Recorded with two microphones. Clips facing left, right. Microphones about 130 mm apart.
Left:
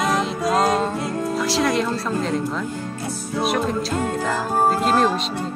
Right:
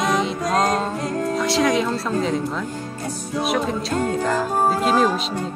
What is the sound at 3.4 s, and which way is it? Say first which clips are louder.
Music: left 1 dB; centre (ahead or behind).